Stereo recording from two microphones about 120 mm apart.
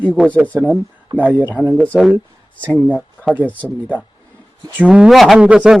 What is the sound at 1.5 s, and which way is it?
Speech, 20° right (ahead or behind).